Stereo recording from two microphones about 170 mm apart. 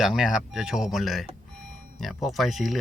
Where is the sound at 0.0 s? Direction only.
5° right (ahead or behind).